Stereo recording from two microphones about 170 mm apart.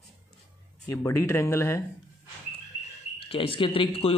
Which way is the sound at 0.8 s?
20° left (ahead or behind).